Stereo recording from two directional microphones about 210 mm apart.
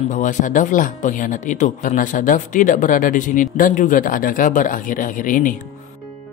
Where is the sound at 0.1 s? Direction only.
35° left (ahead or behind).